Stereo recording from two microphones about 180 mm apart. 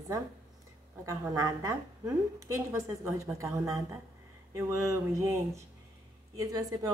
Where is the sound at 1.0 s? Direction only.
20° right (ahead or behind).